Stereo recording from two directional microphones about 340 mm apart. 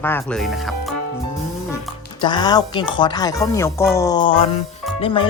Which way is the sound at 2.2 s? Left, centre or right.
Centre.